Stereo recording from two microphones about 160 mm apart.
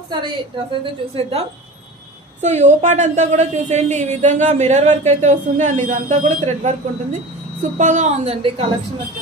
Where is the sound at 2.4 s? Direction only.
45° right (ahead or behind).